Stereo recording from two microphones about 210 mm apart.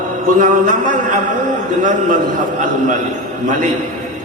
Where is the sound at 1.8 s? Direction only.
35° right (ahead or behind).